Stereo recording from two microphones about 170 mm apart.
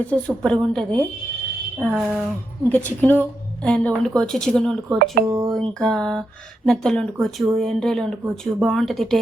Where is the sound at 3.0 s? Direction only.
10° left (ahead or behind).